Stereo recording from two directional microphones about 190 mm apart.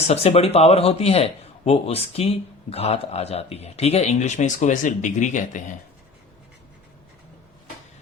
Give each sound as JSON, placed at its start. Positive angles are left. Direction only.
{"t": 0.1, "sound": "speech", "side_deg": 35}